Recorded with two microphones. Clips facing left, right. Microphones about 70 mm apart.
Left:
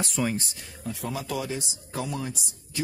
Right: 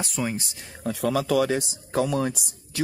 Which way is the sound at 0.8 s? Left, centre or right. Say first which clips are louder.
Right 8 dB; right.